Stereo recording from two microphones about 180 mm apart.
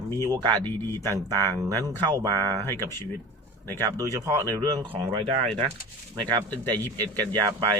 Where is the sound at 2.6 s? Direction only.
15° left (ahead or behind).